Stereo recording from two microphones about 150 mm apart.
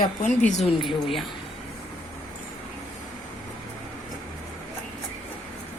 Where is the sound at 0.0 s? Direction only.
55° left (ahead or behind).